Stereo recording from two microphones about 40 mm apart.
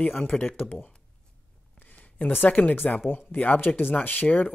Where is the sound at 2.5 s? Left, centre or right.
Left.